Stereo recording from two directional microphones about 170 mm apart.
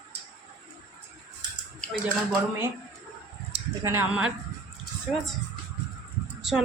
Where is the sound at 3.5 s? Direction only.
35° right (ahead or behind).